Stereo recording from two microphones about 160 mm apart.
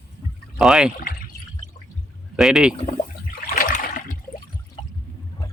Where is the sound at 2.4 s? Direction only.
5° right (ahead or behind).